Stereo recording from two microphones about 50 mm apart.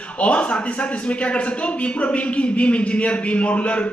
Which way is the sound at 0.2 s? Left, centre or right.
Left.